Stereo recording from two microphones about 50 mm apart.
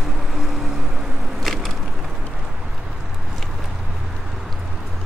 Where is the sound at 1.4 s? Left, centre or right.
Centre.